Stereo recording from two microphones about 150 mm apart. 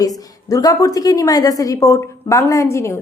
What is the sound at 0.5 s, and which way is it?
A woman's voice, 25° left (ahead or behind).